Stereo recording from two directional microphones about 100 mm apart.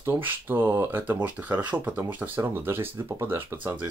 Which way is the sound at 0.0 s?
20° right (ahead or behind).